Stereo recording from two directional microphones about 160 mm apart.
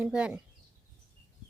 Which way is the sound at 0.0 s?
5° right (ahead or behind).